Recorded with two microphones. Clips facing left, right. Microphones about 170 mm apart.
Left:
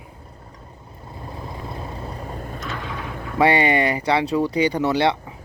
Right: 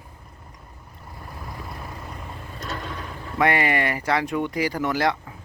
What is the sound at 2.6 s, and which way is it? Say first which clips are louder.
Vehicle: right 1 dB; 40° right (ahead or behind).